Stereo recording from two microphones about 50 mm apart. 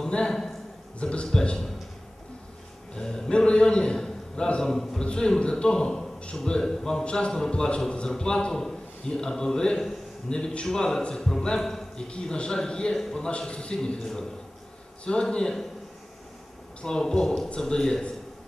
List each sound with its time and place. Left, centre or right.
0.0 s a man's voice: centre
2.9 s a man's voice: centre
16.8 s a man's voice: centre